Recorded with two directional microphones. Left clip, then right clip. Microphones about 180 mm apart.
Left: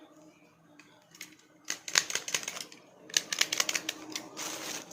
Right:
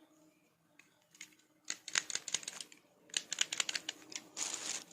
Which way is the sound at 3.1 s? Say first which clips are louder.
Left 8 dB; 5° right (ahead or behind).